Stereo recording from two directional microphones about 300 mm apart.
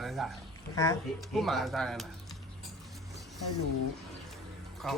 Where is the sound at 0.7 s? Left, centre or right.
Centre.